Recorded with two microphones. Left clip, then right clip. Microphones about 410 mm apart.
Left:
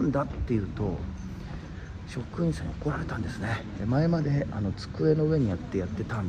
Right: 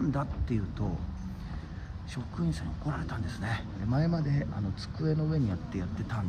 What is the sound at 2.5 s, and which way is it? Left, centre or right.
Speech, centre.